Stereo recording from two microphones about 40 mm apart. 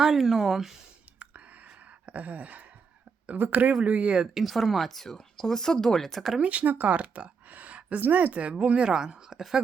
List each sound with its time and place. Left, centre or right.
0.0 s speech: centre
1.2 s a sound: right
3.3 s speech: right
4.4 s speech: centre
6.4 s a woman's voice: right; by 9.4 s centre